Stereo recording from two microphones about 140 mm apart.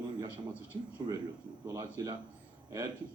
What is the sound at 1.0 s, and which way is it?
Speech, 35° right (ahead or behind).